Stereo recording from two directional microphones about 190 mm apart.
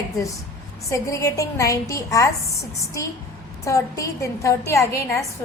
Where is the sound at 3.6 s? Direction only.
15° left (ahead or behind).